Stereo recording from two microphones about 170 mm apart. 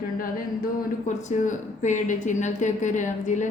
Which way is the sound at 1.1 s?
45° left (ahead or behind).